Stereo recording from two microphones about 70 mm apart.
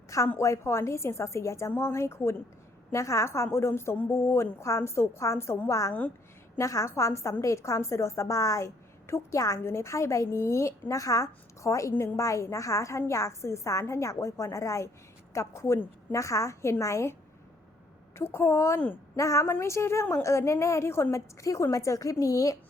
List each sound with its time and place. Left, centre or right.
0.3 s a woman's voice: left
18.2 s a woman's voice: left